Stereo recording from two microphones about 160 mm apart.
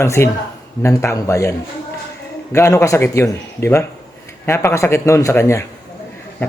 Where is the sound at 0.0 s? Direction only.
15° left (ahead or behind).